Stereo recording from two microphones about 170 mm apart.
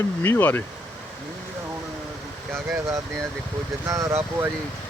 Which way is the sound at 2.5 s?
15° right (ahead or behind).